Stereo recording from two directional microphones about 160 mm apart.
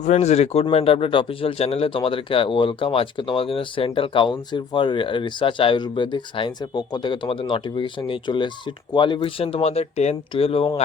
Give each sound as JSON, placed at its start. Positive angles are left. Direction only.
{"t": 0.0, "sound": "a man's voice", "side_deg": 45}